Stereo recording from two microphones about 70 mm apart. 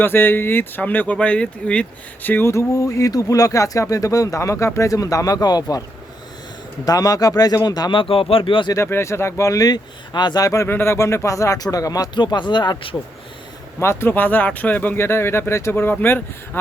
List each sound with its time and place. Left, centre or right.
0.0 s speech: left; by 1.9 s centre
2.2 s speech: left
2.5 s speech: left
6.8 s speech: left
8.7 s speech: left
10.7 s speech: left
12.9 s speech: left
14.9 s speech: left